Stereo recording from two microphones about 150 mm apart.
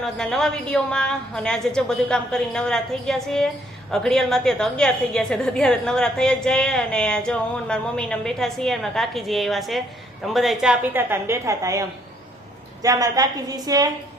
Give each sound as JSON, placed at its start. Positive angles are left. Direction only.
{"t": 0.0, "sound": "a woman's voice", "side_deg": 0}